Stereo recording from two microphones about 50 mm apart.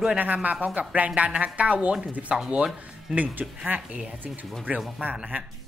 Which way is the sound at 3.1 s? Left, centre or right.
Right.